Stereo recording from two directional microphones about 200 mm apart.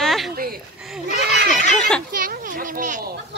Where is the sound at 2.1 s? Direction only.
45° right (ahead or behind).